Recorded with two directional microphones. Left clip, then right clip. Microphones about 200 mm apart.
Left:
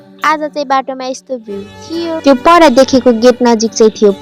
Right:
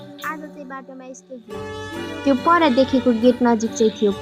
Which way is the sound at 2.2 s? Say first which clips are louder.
Left 10 dB; 35° left (ahead or behind).